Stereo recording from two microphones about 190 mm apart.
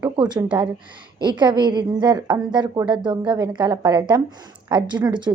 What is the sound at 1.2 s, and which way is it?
A woman's voice, 25° right (ahead or behind).